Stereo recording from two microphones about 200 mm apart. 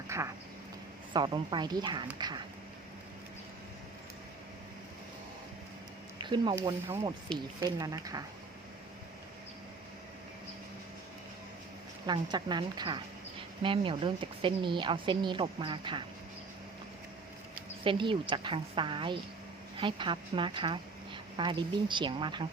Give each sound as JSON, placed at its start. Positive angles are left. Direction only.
{"t": 0.1, "sound": "a woman's voice", "side_deg": -15}
{"t": 6.1, "sound": "a woman's voice", "side_deg": -25}
{"t": 7.3, "sound": "speech", "side_deg": 5}
{"t": 7.8, "sound": "speech", "side_deg": -15}
{"t": 12.0, "sound": "a woman's voice", "side_deg": -20}
{"t": 17.8, "sound": "a woman's voice", "side_deg": -25}